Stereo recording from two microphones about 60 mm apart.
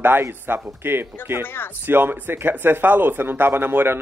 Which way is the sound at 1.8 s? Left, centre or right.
Right.